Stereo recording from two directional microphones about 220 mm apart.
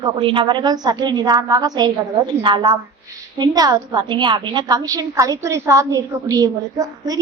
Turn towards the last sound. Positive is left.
turn(degrees=-15)  # may be behind; listen again after turning